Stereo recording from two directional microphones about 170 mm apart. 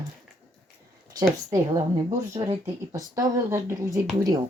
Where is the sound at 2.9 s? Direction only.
20° right (ahead or behind).